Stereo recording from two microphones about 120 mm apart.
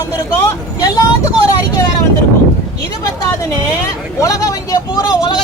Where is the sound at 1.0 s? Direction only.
30° left (ahead or behind).